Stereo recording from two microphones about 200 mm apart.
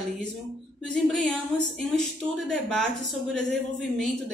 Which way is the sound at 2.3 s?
Centre (ahead or behind).